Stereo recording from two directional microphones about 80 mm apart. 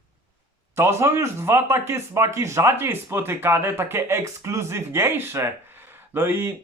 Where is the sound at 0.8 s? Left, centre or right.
Right.